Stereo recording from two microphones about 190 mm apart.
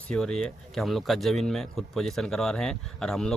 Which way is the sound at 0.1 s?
5° left (ahead or behind).